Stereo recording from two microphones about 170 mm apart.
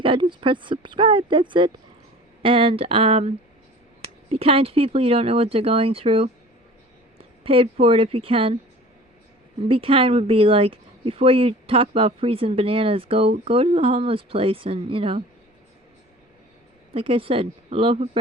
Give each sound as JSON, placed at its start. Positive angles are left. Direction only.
{"t": 0.0, "sound": "speech", "side_deg": -30}
{"t": 7.4, "sound": "speech", "side_deg": -35}
{"t": 9.6, "sound": "speech", "side_deg": -35}
{"t": 16.9, "sound": "speech", "side_deg": -35}